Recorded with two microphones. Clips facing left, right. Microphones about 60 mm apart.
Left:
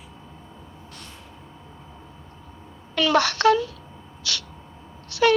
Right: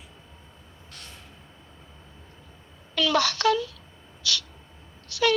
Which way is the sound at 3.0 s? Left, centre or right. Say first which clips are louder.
Left 4 dB; left.